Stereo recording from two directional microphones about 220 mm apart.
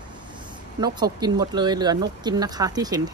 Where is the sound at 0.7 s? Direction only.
20° right (ahead or behind).